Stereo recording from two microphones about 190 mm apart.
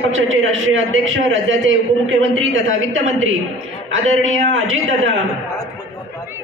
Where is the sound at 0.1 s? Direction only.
90° right.